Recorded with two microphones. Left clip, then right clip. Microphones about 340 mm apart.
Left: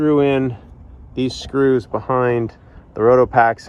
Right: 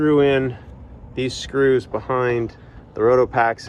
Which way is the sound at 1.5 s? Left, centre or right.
Centre.